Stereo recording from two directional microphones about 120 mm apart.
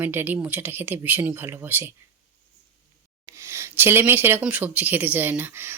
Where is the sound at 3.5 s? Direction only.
20° right (ahead or behind).